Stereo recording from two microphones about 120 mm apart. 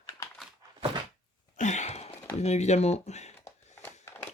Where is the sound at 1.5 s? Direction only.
85° left; by 2.1 s 65° left (ahead or behind).